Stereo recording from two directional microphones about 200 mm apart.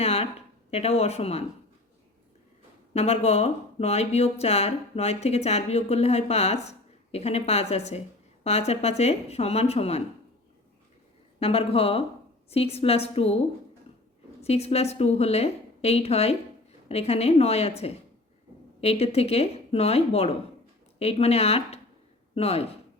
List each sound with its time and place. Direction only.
0.0 s a sound: 30° left (ahead or behind)
0.7 s speech: 30° left (ahead or behind)
2.9 s speech: 30° left (ahead or behind)
11.3 s a woman's voice: 30° left (ahead or behind)
14.4 s a woman's voice: 30° left (ahead or behind)